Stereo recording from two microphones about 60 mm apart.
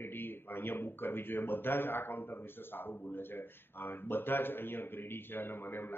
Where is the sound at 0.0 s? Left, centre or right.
Left.